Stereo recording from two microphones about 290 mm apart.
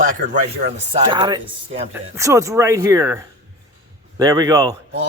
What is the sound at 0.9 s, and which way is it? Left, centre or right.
Speech, centre.